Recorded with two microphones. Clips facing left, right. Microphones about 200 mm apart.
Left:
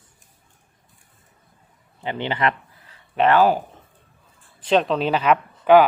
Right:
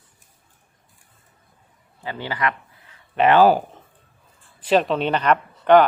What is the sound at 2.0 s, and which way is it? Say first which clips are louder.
Speech: left 3 dB; 20° left (ahead or behind).